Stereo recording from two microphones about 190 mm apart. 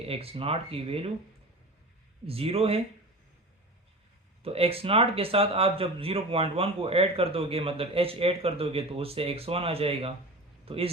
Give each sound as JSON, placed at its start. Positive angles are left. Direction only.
{"t": 0.0, "sound": "speech", "side_deg": -30}
{"t": 2.2, "sound": "speech", "side_deg": -30}
{"t": 4.4, "sound": "speech", "side_deg": -30}